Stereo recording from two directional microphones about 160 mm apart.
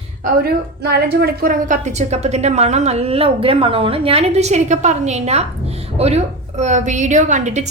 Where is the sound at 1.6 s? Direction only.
50° right (ahead or behind).